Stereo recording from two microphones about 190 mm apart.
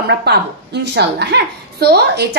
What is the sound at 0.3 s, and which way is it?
A woman's voice, 60° right (ahead or behind).